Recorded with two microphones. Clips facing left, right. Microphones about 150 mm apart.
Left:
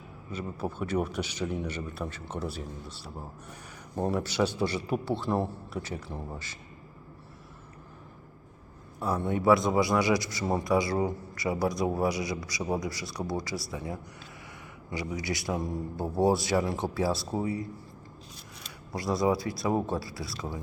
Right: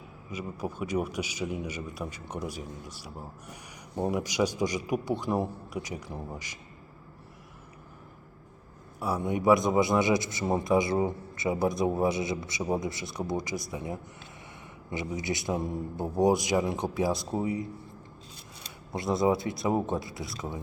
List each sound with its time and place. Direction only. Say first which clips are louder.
0.3 s a man's voice: left 1 dB; 10° right (ahead or behind)
9.0 s a man's voice: even; 10° right (ahead or behind)
18.9 s a man's voice: right 1 dB; 20° right (ahead or behind)